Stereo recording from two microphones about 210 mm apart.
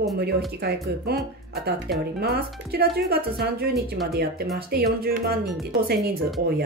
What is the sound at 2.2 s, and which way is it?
Speech, 50° right (ahead or behind).